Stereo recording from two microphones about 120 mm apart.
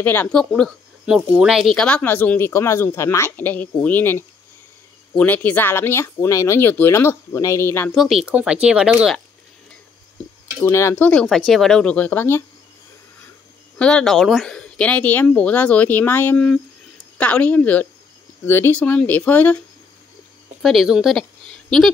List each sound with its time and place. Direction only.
0.0 s speech: 15° left (ahead or behind)
7.9 s speech: centre (ahead or behind)
10.6 s speech: 25° left (ahead or behind)
11.0 s speech: 10° left (ahead or behind)
11.2 s speech: centre (ahead or behind); by 12.4 s 15° left (ahead or behind)
13.7 s speech: 10° left (ahead or behind)
20.6 s speech: centre (ahead or behind)